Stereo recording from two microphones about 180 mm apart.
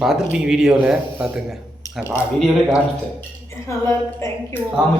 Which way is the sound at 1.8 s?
20° left (ahead or behind).